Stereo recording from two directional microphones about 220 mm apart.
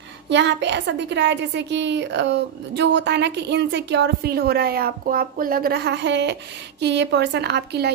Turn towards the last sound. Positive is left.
turn(degrees=-50)  # may be behind; listen again after turning